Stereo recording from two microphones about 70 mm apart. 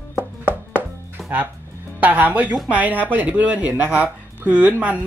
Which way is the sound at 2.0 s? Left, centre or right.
Right.